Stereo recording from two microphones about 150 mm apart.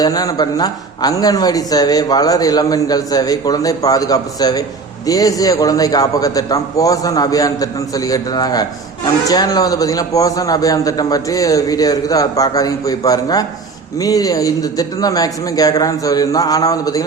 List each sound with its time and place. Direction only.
0.0 s speech: 25° left (ahead or behind)